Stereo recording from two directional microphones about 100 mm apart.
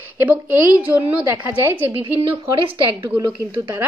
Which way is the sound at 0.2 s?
15° right (ahead or behind).